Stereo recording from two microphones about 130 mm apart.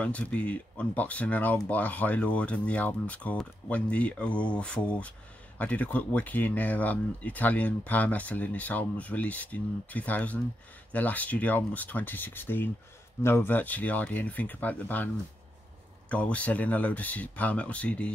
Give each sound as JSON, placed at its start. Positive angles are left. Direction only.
{"t": 0.0, "sound": "speech", "side_deg": 10}
{"t": 16.1, "sound": "speech", "side_deg": 10}